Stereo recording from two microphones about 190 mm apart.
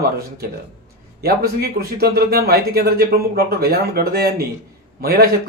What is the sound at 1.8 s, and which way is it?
Speech, 55° right (ahead or behind).